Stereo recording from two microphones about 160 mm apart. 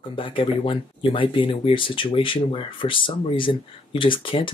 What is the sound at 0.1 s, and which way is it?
Speech, 35° left (ahead or behind).